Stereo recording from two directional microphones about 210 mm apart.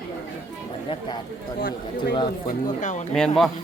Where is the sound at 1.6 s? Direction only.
45° left (ahead or behind).